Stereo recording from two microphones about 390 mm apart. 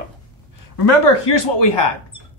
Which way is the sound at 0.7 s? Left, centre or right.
Left.